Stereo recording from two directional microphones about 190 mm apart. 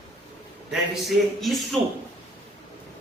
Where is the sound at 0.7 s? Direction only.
Centre (ahead or behind).